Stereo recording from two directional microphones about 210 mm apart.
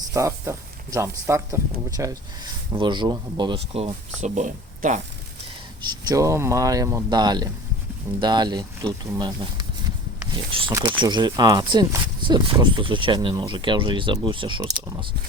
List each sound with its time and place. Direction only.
0.1 s speech: 15° right (ahead or behind); by 4.9 s 35° right (ahead or behind)
5.8 s speech: 15° right (ahead or behind)
10.7 s speech: 20° right (ahead or behind)